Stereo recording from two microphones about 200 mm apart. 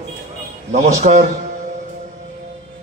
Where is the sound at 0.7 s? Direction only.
35° right (ahead or behind).